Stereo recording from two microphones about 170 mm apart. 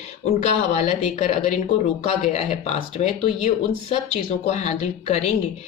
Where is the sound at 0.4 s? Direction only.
40° left (ahead or behind).